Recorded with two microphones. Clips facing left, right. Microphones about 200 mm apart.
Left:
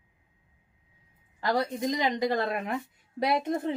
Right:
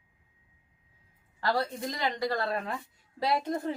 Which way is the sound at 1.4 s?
20° left (ahead or behind).